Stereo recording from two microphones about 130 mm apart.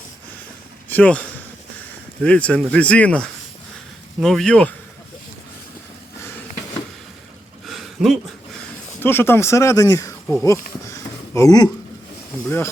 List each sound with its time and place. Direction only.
0.9 s speech: 10° left (ahead or behind)
7.7 s a sound: centre (ahead or behind)
9.0 s speech: 15° left (ahead or behind)